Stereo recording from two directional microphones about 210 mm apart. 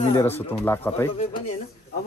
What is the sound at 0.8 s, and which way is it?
Speech, 10° left (ahead or behind).